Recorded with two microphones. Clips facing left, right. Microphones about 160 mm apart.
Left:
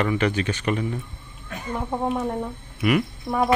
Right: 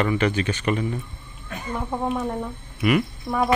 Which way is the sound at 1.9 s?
25° left (ahead or behind).